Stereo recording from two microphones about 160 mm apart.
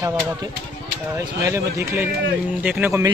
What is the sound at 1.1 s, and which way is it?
Speech, 20° right (ahead or behind).